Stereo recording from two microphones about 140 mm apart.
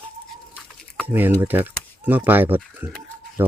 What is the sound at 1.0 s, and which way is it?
Speech, 15° right (ahead or behind).